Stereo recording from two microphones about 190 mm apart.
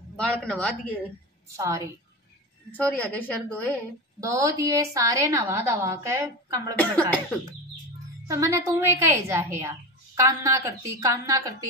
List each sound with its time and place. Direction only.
0.2 s a man's voice: 5° left (ahead or behind)
2.7 s a woman's voice: 5° left (ahead or behind)
4.2 s a woman's voice: 15° right (ahead or behind)
6.8 s a woman's voice: 5° left (ahead or behind)
8.3 s a woman's voice: 15° right (ahead or behind)